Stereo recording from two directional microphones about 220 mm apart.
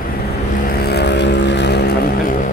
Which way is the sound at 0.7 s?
45° left (ahead or behind).